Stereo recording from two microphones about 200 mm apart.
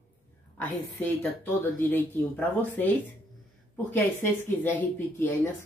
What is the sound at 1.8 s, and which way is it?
Speech, 10° left (ahead or behind).